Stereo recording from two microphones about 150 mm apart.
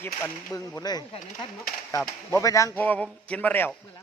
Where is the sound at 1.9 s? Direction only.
20° left (ahead or behind).